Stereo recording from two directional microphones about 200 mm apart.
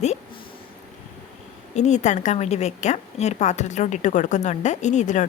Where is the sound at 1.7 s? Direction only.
35° left (ahead or behind).